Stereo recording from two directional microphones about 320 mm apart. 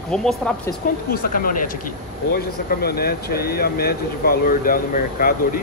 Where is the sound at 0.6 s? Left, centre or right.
Left.